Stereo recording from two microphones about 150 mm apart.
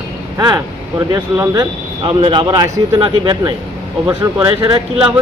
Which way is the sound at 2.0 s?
35° right (ahead or behind).